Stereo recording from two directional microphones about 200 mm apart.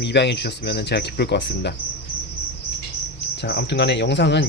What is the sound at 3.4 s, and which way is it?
Speech, 55° left (ahead or behind).